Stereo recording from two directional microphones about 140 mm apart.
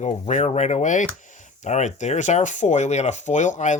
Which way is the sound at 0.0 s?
55° left (ahead or behind).